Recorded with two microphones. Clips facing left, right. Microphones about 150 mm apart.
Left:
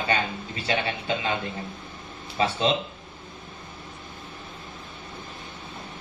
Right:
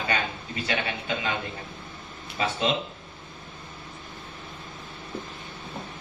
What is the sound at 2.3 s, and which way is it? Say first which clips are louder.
Speech: left 3 dB; 30° left (ahead or behind).